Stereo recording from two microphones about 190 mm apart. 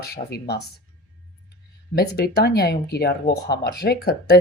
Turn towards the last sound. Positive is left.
turn(degrees=55)  # may be behind; listen again after turning